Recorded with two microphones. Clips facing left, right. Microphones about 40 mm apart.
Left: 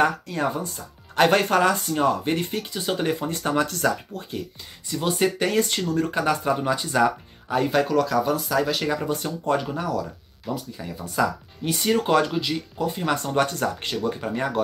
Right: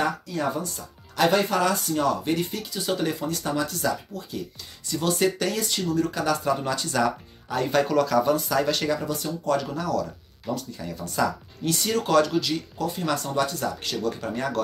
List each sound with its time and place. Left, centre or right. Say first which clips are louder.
0.0 s speech: left 4 dB; left
4.8 s speech: even; centre
5.5 s speech: left 4 dB; left
6.5 s speech: left 2 dB; centre
7.7 s speech: right 2 dB; centre
8.8 s speech: left 1 dB; left
13.2 s speech: left 3 dB; left
13.8 s speech: left 2 dB; left